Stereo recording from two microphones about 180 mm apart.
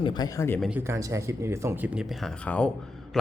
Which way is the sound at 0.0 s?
25° left (ahead or behind).